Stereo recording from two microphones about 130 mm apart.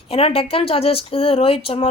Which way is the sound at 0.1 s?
45° left (ahead or behind).